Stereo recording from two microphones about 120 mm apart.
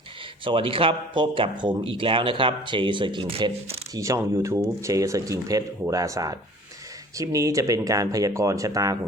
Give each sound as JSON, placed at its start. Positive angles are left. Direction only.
{"t": 0.4, "sound": "speech", "side_deg": -45}
{"t": 3.9, "sound": "speech", "side_deg": -25}